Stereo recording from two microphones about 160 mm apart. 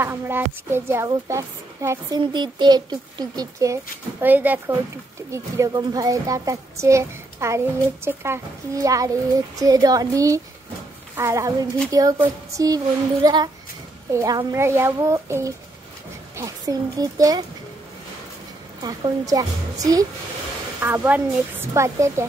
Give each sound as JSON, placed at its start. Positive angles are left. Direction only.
{"t": 0.0, "sound": "a woman's voice", "side_deg": -15}
{"t": 18.8, "sound": "a woman's voice", "side_deg": -25}